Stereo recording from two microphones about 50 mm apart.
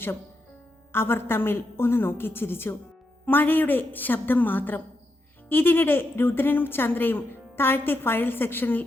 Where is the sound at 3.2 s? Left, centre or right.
Left.